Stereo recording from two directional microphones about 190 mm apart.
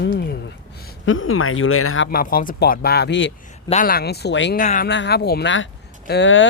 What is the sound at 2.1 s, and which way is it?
Speech, 50° left (ahead or behind).